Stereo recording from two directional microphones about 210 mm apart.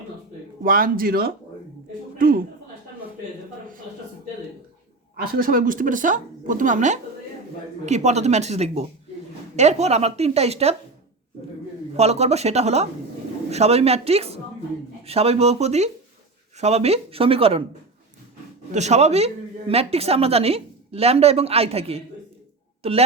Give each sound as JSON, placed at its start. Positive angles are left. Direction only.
{"t": 0.6, "sound": "a woman's voice", "side_deg": -40}
{"t": 5.2, "sound": "speech", "side_deg": -45}
{"t": 11.9, "sound": "speech", "side_deg": -30}
{"t": 18.7, "sound": "speech", "side_deg": -30}